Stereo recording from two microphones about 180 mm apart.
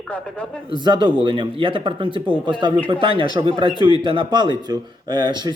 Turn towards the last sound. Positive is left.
turn(degrees=-25)  # may be behind; listen again after turning